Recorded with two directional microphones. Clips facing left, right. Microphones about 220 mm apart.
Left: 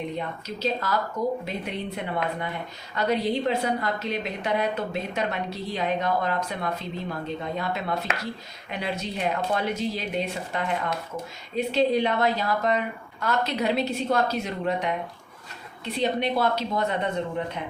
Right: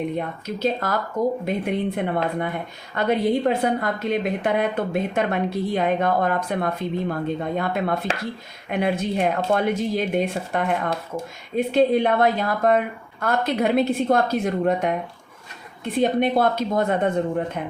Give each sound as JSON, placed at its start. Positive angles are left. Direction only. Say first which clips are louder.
{"t": 0.2, "sound": "speech", "louder": "right 5 dB", "side_deg": -55}